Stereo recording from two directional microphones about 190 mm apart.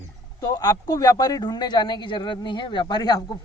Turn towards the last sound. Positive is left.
turn(degrees=20)  # may be behind; listen again after turning